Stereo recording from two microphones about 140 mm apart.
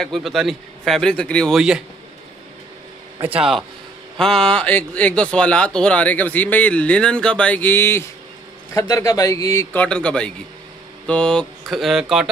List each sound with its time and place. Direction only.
0.0 s a man's voice: centre (ahead or behind)
3.2 s a man's voice: 10° right (ahead or behind); by 9.7 s 25° left (ahead or behind)
9.7 s a man's voice: 10° left (ahead or behind)